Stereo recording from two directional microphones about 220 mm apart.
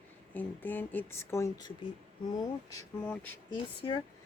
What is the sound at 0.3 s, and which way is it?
Speech, 10° left (ahead or behind).